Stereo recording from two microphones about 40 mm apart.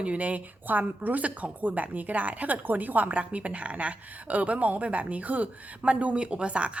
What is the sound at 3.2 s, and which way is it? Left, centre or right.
A woman's voice, right.